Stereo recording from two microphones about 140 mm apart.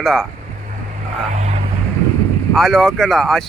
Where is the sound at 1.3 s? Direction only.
55° right (ahead or behind).